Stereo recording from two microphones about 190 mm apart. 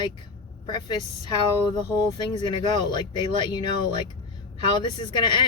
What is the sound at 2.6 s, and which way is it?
Speech, 25° left (ahead or behind).